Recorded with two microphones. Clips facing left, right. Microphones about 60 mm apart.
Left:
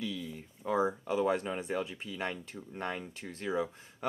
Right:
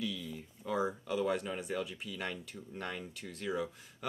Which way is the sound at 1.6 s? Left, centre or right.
Left.